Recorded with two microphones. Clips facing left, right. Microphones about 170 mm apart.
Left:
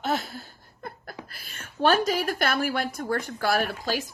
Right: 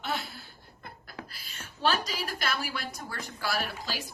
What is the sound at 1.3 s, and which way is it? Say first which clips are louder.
A woman's voice: left 2 dB; 55° left (ahead or behind).